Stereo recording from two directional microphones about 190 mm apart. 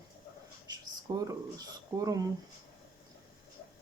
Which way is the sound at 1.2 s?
20° right (ahead or behind).